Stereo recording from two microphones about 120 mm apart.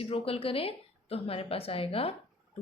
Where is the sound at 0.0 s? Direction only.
50° left (ahead or behind).